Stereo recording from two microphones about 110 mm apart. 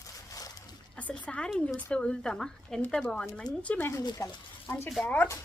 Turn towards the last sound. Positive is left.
turn(degrees=15)  # may be behind; listen again after turning